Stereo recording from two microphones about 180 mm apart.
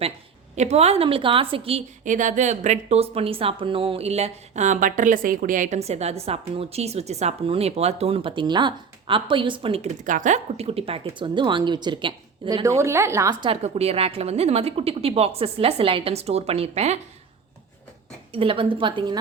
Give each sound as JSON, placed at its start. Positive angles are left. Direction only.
{"t": 0.5, "sound": "speech", "side_deg": -40}
{"t": 2.0, "sound": "speech", "side_deg": -45}
{"t": 12.8, "sound": "a woman's voice", "side_deg": -15}
{"t": 13.4, "sound": "speech", "side_deg": -35}
{"t": 18.3, "sound": "a woman's voice", "side_deg": -30}